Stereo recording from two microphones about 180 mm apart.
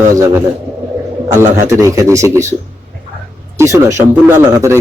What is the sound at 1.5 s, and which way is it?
Speech, 15° right (ahead or behind).